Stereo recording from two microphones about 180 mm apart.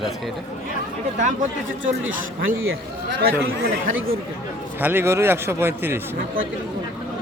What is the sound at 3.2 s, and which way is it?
Speech, 60° right (ahead or behind).